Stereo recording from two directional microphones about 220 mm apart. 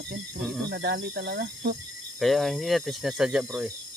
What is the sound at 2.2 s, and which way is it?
Speech, centre (ahead or behind).